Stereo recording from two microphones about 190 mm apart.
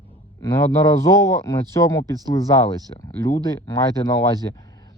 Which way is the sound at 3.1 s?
20° left (ahead or behind).